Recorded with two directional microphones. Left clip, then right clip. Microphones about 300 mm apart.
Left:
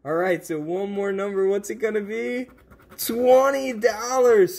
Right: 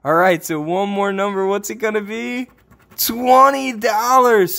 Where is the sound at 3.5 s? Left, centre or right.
Centre.